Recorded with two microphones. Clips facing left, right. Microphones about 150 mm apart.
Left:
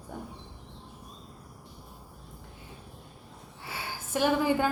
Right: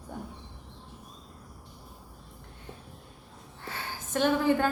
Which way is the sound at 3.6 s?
10° left (ahead or behind).